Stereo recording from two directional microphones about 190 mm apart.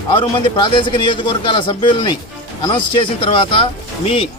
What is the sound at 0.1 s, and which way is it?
A man's voice, 25° left (ahead or behind).